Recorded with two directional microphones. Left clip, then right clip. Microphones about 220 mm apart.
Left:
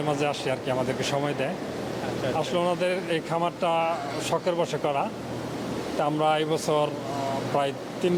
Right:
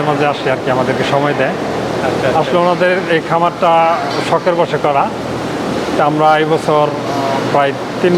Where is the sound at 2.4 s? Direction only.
15° left (ahead or behind).